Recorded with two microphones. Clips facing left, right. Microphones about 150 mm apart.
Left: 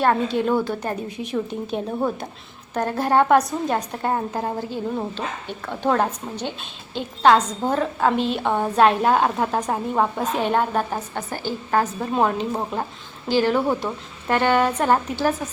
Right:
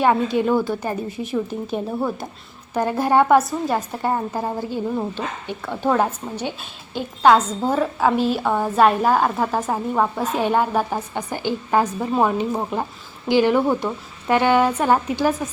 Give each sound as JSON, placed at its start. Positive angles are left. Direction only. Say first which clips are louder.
{"t": 0.0, "sound": "a woman's voice", "louder": "right 2 dB", "side_deg": -10}